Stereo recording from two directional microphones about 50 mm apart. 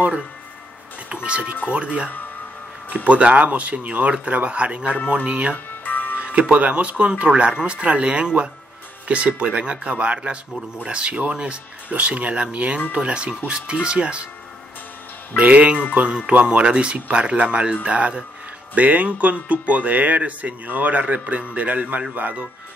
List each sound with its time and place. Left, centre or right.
1.0 s speech: right
5.9 s music: left
6.1 s speech: right
15.3 s speech: right